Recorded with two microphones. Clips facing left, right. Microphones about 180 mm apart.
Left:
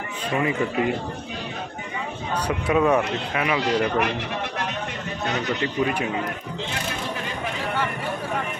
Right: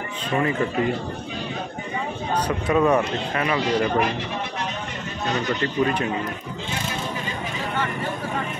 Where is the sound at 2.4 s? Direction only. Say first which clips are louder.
Even; 5° left (ahead or behind).